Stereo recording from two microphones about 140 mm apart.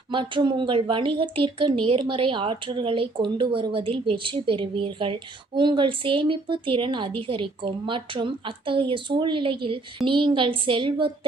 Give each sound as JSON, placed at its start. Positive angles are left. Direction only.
{"t": 0.1, "sound": "a woman's voice", "side_deg": -35}